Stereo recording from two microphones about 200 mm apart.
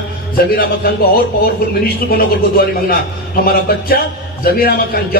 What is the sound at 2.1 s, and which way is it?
A man's voice, 50° left (ahead or behind).